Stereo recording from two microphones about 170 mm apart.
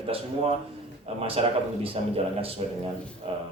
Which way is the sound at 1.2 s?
35° right (ahead or behind).